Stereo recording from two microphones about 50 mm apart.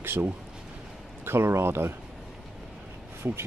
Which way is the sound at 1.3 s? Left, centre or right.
Right.